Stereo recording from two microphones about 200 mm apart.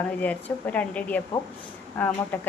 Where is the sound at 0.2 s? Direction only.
5° left (ahead or behind).